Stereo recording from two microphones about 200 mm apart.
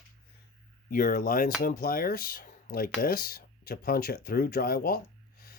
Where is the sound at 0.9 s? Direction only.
45° left (ahead or behind).